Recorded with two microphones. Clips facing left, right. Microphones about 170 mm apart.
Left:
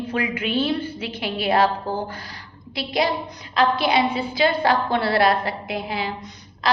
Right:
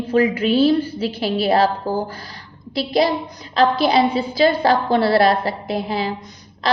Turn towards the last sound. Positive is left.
turn(degrees=-35)  # may be behind; listen again after turning